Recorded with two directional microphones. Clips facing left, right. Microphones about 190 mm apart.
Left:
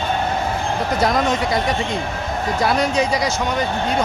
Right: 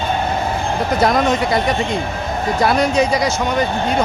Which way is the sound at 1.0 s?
60° right (ahead or behind).